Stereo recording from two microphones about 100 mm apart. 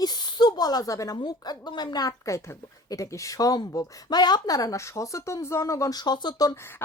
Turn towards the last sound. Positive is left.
turn(degrees=45)  # may be behind; listen again after turning